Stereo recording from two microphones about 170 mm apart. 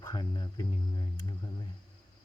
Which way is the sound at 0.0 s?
25° left (ahead or behind).